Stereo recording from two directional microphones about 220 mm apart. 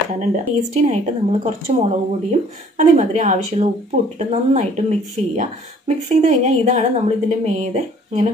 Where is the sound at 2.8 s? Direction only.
35° right (ahead or behind).